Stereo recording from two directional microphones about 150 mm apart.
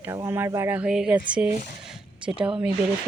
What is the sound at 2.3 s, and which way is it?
Speech, 35° right (ahead or behind).